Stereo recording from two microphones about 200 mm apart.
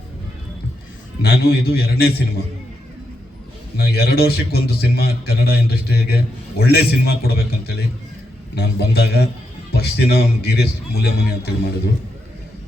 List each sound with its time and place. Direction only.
1.2 s a man's voice: 50° left (ahead or behind)
3.8 s a man's voice: 50° left (ahead or behind)